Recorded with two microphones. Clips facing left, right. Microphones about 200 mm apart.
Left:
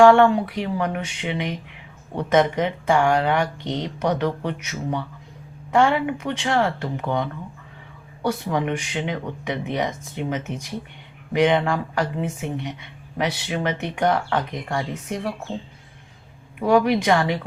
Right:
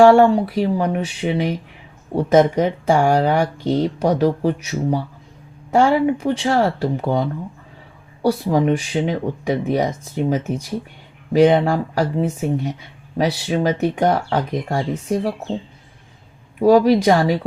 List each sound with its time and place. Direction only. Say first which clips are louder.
0.0 s speech: right 3 dB; 35° right (ahead or behind)
16.6 s speech: right 6 dB; 30° right (ahead or behind)